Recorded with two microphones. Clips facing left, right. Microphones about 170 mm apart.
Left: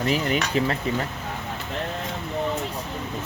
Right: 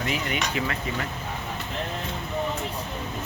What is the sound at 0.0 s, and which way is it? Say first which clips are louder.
Speech: left 5 dB; 35° left (ahead or behind).